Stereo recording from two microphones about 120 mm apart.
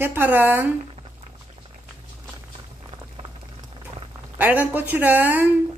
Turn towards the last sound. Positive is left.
turn(degrees=-15)  # may be behind; listen again after turning